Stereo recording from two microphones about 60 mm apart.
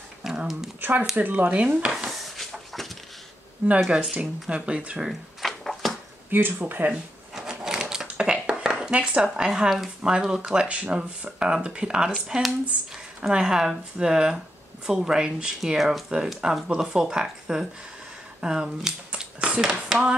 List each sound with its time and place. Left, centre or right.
0.2 s a sound: centre
0.7 s dishes: right
1.1 s speech: right
1.5 s dishes: right
2.0 s chicken: centre
3.9 s speech: centre
5.4 s a sound: centre
6.3 s speech: right
7.3 s speech: centre